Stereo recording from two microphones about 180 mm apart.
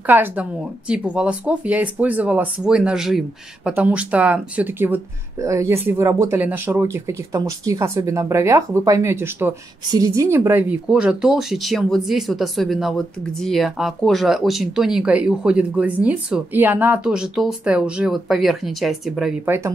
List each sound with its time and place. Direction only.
0.0 s a woman's voice: 10° right (ahead or behind)